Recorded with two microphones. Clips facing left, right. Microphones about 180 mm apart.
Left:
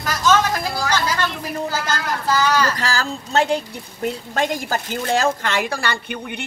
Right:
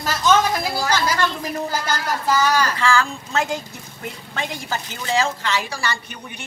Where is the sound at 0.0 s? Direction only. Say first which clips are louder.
Left 1 dB; 25° right (ahead or behind).